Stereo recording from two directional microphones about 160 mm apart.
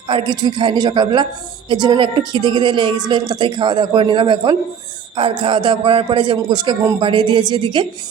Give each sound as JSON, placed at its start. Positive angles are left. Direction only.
{"t": 0.1, "sound": "a woman's voice", "side_deg": -30}